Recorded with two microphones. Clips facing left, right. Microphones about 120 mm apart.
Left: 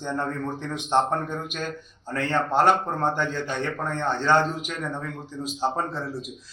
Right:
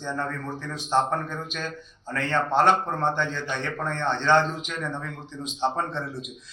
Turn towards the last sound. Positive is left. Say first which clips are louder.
# left 1 dB
turn(degrees=0)  # may be behind; listen again after turning